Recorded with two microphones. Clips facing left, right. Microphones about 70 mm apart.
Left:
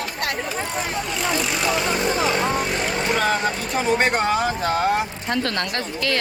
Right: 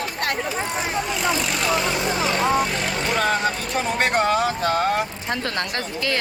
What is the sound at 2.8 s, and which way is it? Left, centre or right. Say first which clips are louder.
Speech: left 1 dB; centre.